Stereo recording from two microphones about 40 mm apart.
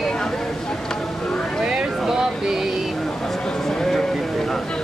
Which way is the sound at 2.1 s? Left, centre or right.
Centre.